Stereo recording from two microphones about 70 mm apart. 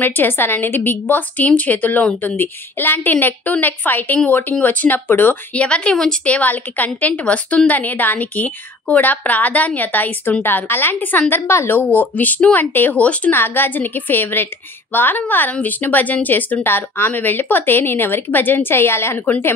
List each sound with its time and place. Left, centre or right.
0.0 s speech: left
11.8 s speech: left